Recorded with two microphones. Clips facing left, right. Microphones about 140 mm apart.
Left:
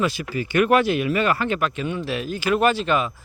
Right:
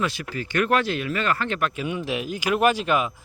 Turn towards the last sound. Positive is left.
turn(degrees=-10)  # may be behind; listen again after turning